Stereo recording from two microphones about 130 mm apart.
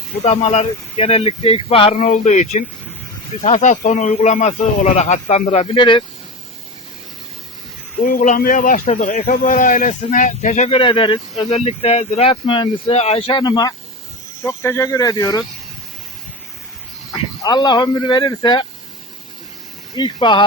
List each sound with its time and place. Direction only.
0.2 s speech: 50° left (ahead or behind)
2.0 s speech: 65° left (ahead or behind)
5.7 s speech: 40° left (ahead or behind)
8.0 s a man's voice: 85° left; by 10.8 s 65° left (ahead or behind)
10.8 s speech: 40° left (ahead or behind)
11.4 s speech: 55° left (ahead or behind)
12.3 s speech: 40° left (ahead or behind)
14.4 s speech: 20° left (ahead or behind)
17.1 s speech: 30° left (ahead or behind)
20.0 s speech: 35° left (ahead or behind)